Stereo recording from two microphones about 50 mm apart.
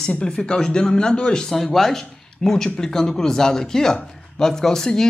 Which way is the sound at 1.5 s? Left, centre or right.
Centre.